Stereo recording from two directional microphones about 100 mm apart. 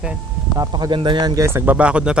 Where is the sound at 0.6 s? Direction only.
45° right (ahead or behind).